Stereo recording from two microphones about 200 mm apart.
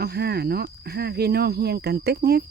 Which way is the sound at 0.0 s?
50° right (ahead or behind).